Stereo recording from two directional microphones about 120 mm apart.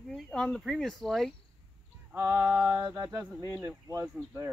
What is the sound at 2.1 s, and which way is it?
Speech, 20° right (ahead or behind).